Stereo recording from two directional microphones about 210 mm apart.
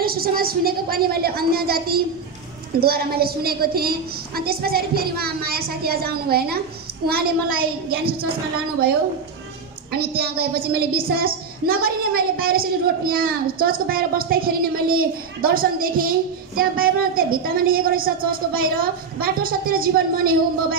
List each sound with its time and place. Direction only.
0.0 s a woman's voice: 45° right (ahead or behind)
9.9 s a woman's voice: 50° right (ahead or behind)